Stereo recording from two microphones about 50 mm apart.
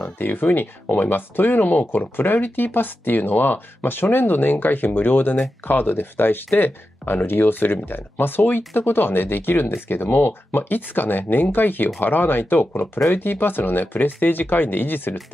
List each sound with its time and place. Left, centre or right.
0.0 s speech: left